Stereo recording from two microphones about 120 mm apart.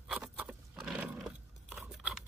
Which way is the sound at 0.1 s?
10° right (ahead or behind).